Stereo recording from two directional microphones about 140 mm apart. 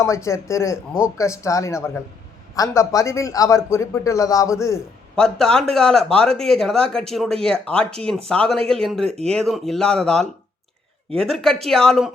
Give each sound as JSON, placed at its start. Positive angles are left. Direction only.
{"t": 0.0, "sound": "a man's voice", "side_deg": 20}
{"t": 5.1, "sound": "speech", "side_deg": 5}